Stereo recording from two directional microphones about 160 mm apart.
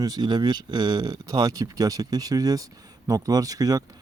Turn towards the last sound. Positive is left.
turn(degrees=-25)  # may be behind; listen again after turning